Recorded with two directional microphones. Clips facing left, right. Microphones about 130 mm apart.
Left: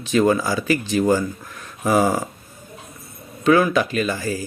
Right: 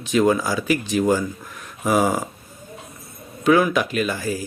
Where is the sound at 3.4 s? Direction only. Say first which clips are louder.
Left 1 dB; 5° right (ahead or behind).